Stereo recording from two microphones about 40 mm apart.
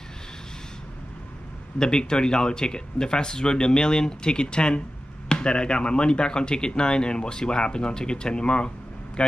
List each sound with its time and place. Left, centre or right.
1.8 s speech: centre